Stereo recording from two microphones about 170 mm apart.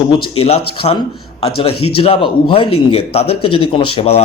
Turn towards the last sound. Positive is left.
turn(degrees=35)  # may be behind; listen again after turning